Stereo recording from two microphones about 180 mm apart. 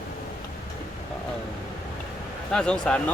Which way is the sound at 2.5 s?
5° left (ahead or behind).